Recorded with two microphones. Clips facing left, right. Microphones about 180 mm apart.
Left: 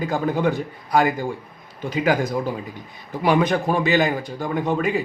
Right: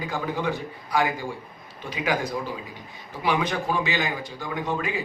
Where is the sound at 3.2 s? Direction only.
50° left (ahead or behind).